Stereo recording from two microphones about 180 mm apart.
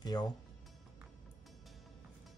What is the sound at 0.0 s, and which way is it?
Speech, 20° left (ahead or behind).